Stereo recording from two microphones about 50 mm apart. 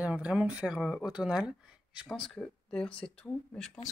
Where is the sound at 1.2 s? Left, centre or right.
Centre.